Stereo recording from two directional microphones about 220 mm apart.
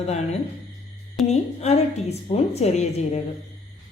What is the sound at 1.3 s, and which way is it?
Speech, 30° left (ahead or behind).